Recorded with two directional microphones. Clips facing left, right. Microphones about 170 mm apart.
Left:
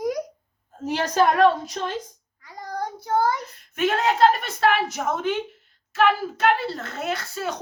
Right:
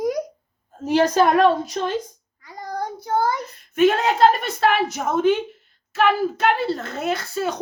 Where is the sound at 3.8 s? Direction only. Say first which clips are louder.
Right 3 dB; 20° right (ahead or behind).